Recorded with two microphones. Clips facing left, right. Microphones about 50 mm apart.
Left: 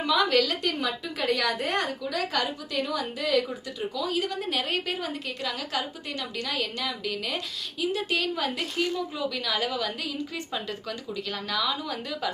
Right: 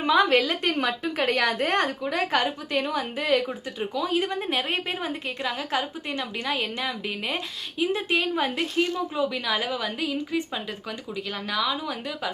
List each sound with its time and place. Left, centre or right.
0.0 s a woman's voice: right
0.7 s a woman's voice: right; by 12.3 s centre